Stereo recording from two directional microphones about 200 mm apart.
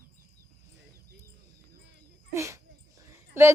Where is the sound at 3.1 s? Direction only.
10° right (ahead or behind).